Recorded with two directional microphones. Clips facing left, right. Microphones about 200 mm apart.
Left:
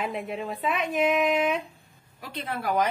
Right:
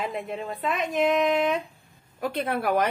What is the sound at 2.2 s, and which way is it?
Speech, 55° right (ahead or behind).